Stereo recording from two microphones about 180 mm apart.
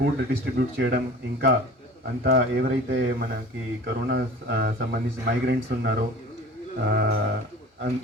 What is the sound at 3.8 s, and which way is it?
Speech, 65° right (ahead or behind).